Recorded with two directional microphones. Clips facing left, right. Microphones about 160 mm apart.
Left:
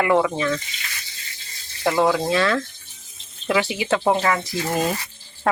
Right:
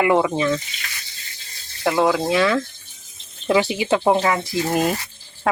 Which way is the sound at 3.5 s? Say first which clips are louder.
Right 3 dB; 25° right (ahead or behind).